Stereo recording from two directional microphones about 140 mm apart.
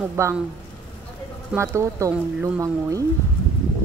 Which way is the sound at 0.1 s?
20° right (ahead or behind).